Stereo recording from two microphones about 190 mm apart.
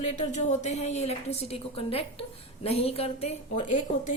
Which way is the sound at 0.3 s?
40° left (ahead or behind).